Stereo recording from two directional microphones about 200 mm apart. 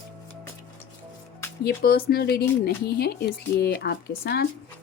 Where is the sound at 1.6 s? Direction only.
50° left (ahead or behind).